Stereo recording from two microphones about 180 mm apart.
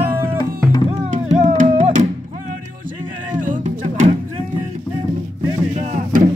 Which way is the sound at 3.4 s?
45° right (ahead or behind).